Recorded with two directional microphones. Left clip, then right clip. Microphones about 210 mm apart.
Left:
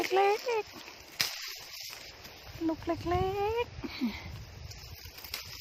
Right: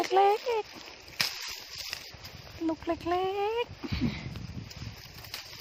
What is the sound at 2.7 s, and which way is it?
Speech, 10° right (ahead or behind).